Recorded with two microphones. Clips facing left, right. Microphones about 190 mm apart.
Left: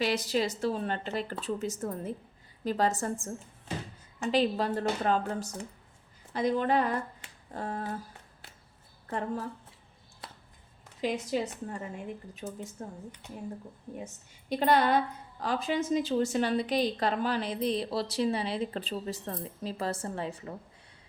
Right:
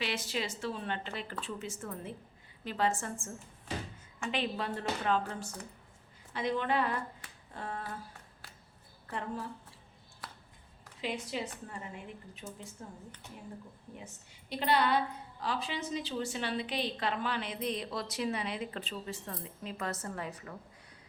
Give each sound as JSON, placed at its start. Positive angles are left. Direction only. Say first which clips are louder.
{"t": 0.0, "sound": "a woman's voice", "louder": "left 7 dB", "side_deg": 40}
{"t": 9.0, "sound": "a woman's voice", "louder": "left 5 dB", "side_deg": 45}
{"t": 10.2, "sound": "a sound", "louder": "left 2 dB", "side_deg": 25}
{"t": 11.0, "sound": "a woman's voice", "louder": "left 6 dB", "side_deg": 40}
{"t": 14.5, "sound": "a woman's voice", "louder": "left 4 dB", "side_deg": 45}